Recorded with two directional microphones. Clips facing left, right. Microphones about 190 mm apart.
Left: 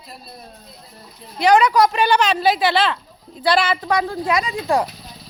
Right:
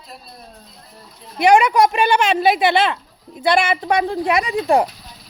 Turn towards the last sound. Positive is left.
turn(degrees=-15)  # may be behind; listen again after turning